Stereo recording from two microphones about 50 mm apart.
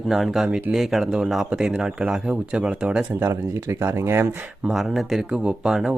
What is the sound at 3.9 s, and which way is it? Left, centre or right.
Speech, right.